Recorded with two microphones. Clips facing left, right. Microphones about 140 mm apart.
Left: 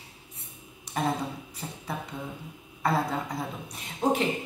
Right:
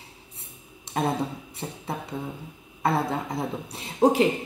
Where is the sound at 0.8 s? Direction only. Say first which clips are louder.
Right 3 dB; 25° right (ahead or behind).